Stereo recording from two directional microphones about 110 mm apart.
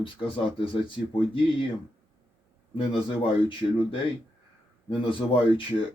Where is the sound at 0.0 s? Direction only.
50° left (ahead or behind).